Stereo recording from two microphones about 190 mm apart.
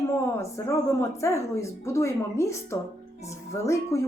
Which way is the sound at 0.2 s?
15° left (ahead or behind).